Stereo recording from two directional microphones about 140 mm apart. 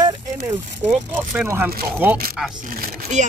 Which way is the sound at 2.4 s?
5° right (ahead or behind).